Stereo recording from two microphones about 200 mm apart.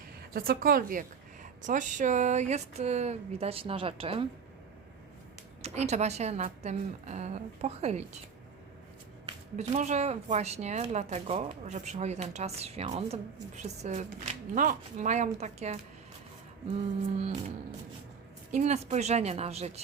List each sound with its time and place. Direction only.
0.3 s speech: 50° right (ahead or behind); by 4.3 s 25° right (ahead or behind)
5.6 s speech: 35° right (ahead or behind)
9.2 s speech: 35° right (ahead or behind)
18.5 s speech: 35° right (ahead or behind)